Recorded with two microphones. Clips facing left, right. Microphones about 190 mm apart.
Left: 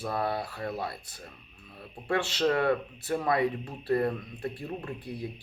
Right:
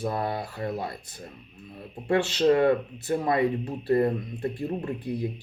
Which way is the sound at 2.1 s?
15° right (ahead or behind).